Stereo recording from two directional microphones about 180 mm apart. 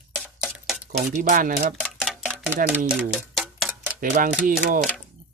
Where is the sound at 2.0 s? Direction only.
5° right (ahead or behind).